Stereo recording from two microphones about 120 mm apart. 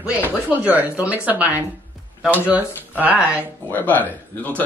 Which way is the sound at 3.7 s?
15° left (ahead or behind).